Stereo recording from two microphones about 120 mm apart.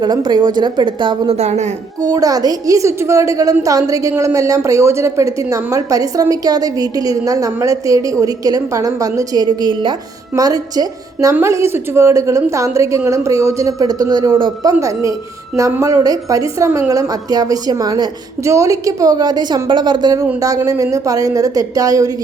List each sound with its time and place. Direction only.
0.0 s a woman's voice: 35° right (ahead or behind)
1.4 s a woman's voice: 70° right (ahead or behind)
2.0 s a woman's voice: 30° right (ahead or behind)